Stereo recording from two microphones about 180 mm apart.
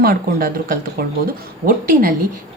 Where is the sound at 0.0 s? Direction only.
55° right (ahead or behind).